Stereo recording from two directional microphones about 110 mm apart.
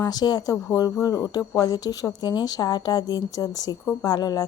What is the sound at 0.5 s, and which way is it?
Speech, 30° left (ahead or behind).